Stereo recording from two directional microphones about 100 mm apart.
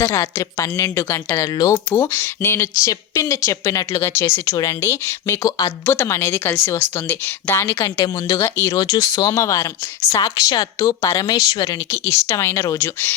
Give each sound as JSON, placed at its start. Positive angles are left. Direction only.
{"t": 0.0, "sound": "a woman's voice", "side_deg": 30}
{"t": 7.9, "sound": "speech", "side_deg": 40}
{"t": 8.4, "sound": "a woman's voice", "side_deg": 25}
{"t": 8.7, "sound": "speech", "side_deg": 35}
{"t": 11.9, "sound": "a woman's voice", "side_deg": 30}